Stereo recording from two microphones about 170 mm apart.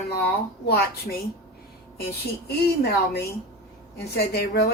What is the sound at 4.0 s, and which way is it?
Speech, 70° left (ahead or behind).